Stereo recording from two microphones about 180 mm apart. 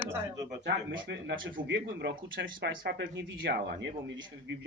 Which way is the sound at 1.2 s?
75° right (ahead or behind).